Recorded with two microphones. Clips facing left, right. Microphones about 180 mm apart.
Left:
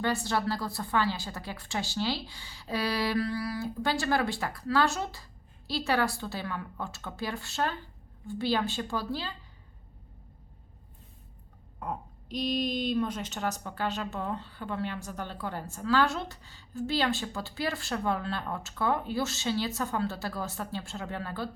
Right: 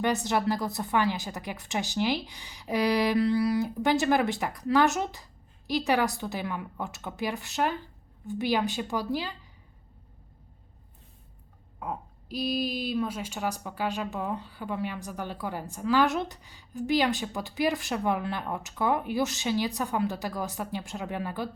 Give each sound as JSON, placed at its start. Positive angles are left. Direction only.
{"t": 0.0, "sound": "speech", "side_deg": -20}
{"t": 11.8, "sound": "speech", "side_deg": -5}